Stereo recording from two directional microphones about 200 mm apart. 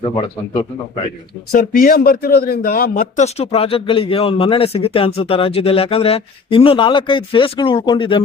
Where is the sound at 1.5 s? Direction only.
45° left (ahead or behind).